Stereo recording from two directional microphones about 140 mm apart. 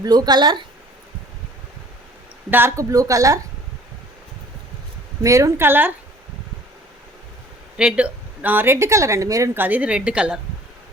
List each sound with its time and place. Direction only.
0.0 s speech: 30° right (ahead or behind)
2.5 s speech: 15° right (ahead or behind)
5.2 s speech: 20° right (ahead or behind)
7.8 s speech: 5° right (ahead or behind)